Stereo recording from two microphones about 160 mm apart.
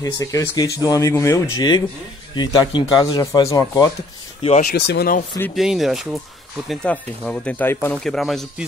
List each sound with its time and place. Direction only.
0.0 s speech: 20° left (ahead or behind)
4.4 s speech: 40° left (ahead or behind)
4.6 s speech: 90° left
5.6 s speech: centre (ahead or behind); by 8.0 s 15° left (ahead or behind)
8.0 s speech: centre (ahead or behind)